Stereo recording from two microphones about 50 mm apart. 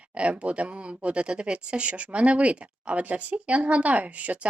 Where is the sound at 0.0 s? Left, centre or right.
Right.